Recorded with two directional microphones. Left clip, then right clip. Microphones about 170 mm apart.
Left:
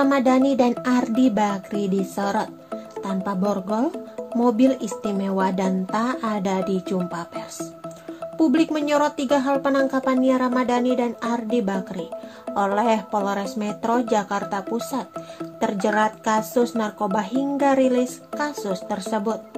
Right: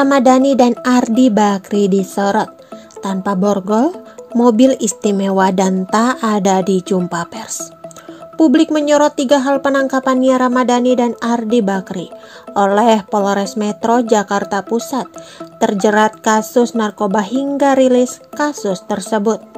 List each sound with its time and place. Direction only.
0.0 s speech: 50° right (ahead or behind)
8.4 s speech: 40° right (ahead or behind)